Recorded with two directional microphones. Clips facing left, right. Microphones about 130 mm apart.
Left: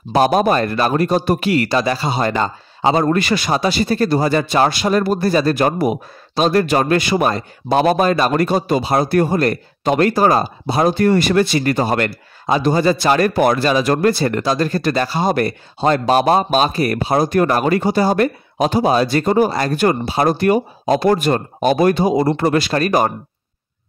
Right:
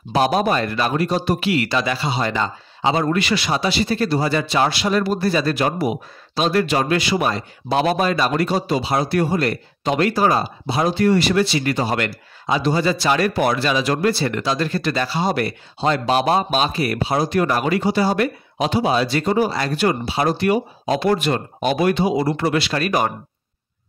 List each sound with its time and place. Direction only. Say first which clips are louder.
0.1 s a man's voice: left 4 dB; 45° left (ahead or behind)